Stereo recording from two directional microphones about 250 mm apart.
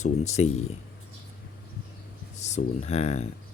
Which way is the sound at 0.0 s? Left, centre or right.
Left.